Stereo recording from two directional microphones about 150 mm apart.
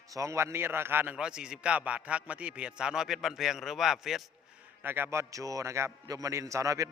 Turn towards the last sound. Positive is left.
turn(degrees=-20)  # may be behind; listen again after turning